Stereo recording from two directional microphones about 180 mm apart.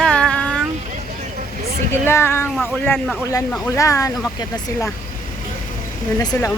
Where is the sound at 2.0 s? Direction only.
15° left (ahead or behind).